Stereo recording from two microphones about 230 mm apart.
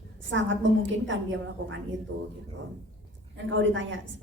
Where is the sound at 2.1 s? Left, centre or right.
Right.